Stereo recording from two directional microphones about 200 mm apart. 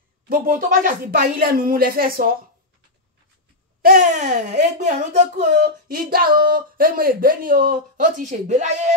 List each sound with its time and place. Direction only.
0.3 s speech: 45° right (ahead or behind)
3.8 s speech: 40° right (ahead or behind)